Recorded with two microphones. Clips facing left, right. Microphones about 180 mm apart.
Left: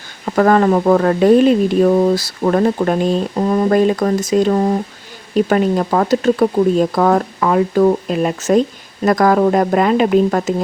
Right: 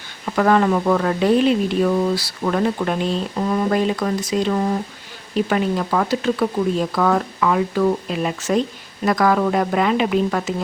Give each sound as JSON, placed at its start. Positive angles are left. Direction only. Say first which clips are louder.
{"t": 0.3, "sound": "speech", "louder": "left 4 dB", "side_deg": 45}